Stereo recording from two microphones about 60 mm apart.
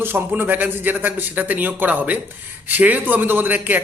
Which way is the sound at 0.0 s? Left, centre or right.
Right.